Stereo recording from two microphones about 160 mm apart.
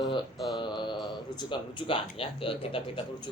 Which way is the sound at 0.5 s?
30° left (ahead or behind).